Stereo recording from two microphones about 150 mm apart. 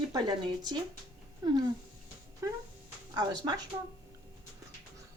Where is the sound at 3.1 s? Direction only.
30° right (ahead or behind).